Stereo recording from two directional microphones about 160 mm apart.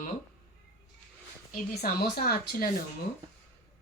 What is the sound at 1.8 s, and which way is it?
Speech, 70° left (ahead or behind).